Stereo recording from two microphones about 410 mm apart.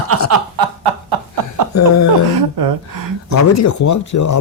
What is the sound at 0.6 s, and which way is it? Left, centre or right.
Snicker, right.